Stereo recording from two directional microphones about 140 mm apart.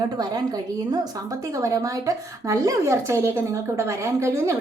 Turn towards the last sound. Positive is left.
turn(degrees=-20)  # may be behind; listen again after turning